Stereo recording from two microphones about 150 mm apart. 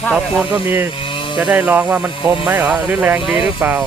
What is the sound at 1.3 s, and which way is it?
Speech, 10° right (ahead or behind).